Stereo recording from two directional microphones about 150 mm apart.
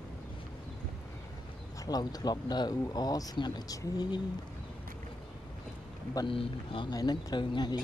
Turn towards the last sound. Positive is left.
turn(degrees=30)  # may be behind; listen again after turning